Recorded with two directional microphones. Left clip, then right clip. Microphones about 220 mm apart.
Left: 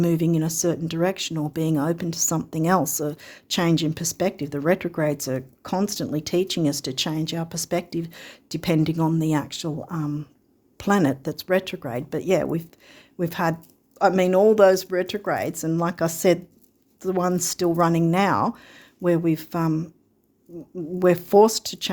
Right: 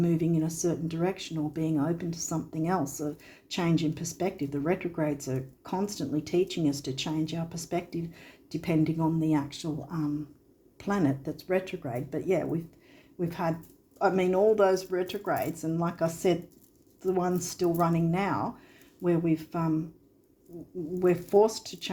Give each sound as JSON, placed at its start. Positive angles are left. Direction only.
{"t": 0.0, "sound": "speech", "side_deg": 50}
{"t": 21.0, "sound": "speech", "side_deg": 55}